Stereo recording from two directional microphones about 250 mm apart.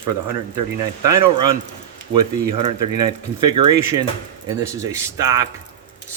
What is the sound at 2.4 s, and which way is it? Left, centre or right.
Speech, centre.